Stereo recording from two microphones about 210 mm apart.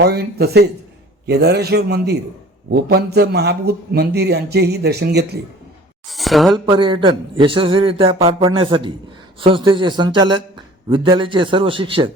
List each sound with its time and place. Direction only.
0.0 s a man's voice: 50° right (ahead or behind)
6.1 s a woman's voice: centre (ahead or behind)
6.7 s a man's voice: 20° right (ahead or behind)